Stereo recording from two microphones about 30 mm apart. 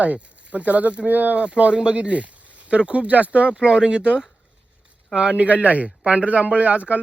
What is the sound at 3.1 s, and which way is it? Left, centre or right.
Speech, right.